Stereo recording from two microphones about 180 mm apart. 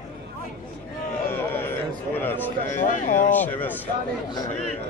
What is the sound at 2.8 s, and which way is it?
Speech, 45° left (ahead or behind).